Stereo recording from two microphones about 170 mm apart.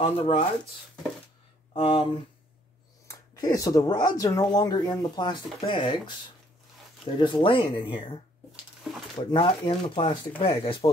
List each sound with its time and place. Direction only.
0.0 s speech: 30° left (ahead or behind)
1.7 s speech: 35° left (ahead or behind)
3.1 s speech: 20° left (ahead or behind)
9.2 s speech: 30° left (ahead or behind)